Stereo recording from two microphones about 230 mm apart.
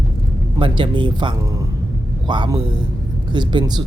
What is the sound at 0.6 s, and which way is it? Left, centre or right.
Speech, right.